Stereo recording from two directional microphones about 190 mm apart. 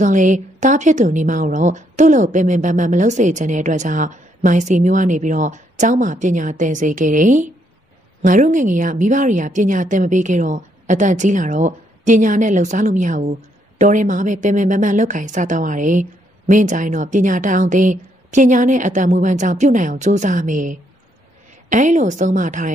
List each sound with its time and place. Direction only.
0.0 s a woman's voice: 40° right (ahead or behind)